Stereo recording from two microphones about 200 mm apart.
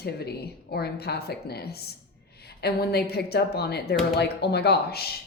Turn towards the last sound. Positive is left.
turn(degrees=50)  # may be behind; listen again after turning